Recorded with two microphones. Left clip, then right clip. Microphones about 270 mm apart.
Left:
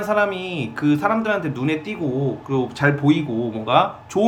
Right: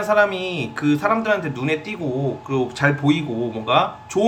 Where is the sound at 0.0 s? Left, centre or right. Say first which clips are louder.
Right 2 dB; centre.